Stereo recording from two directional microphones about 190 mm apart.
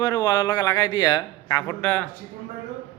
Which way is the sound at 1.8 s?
10° left (ahead or behind).